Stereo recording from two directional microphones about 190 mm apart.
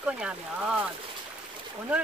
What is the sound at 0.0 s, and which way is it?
Speech, 5° right (ahead or behind).